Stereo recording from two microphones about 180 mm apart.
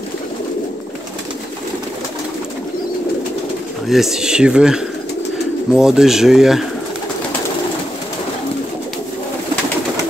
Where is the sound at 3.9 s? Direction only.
Centre (ahead or behind).